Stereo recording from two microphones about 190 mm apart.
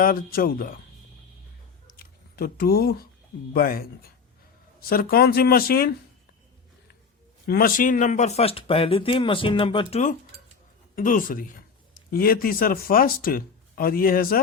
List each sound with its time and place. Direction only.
0.0 s speech: 50° left (ahead or behind)
2.0 s speech: 55° left (ahead or behind)
7.4 s speech: 50° left (ahead or behind); by 9.8 s 25° left (ahead or behind)
9.9 s speech: 40° left (ahead or behind)